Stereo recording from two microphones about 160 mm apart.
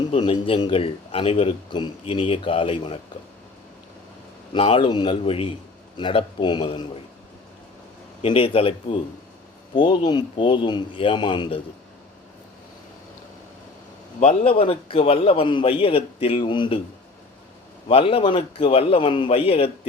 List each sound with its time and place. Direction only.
0.0 s speech: 30° left (ahead or behind)
4.5 s speech: 30° left (ahead or behind)
8.2 s a man's voice: 35° left (ahead or behind)
14.2 s speech: 40° left (ahead or behind)
17.8 s speech: 35° left (ahead or behind)